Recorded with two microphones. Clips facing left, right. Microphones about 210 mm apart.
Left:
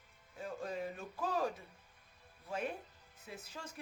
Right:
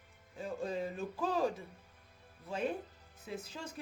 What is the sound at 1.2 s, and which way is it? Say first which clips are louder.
Speech: right 3 dB; 25° right (ahead or behind).